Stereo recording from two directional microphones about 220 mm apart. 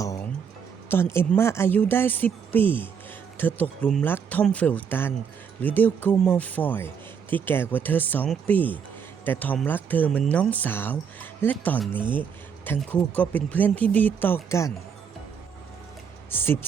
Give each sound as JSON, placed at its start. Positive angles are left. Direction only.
{"t": 0.9, "sound": "speech", "side_deg": 10}
{"t": 16.3, "sound": "speech", "side_deg": 10}